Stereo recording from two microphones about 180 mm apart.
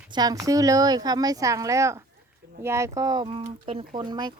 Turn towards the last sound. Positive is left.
turn(degrees=-25)  # may be behind; listen again after turning